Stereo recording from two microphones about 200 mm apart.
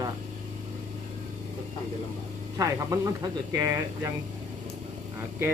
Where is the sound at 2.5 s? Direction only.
15° right (ahead or behind).